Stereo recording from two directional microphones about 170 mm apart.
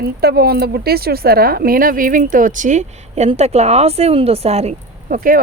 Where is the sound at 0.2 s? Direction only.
65° right (ahead or behind); by 5.1 s 40° right (ahead or behind).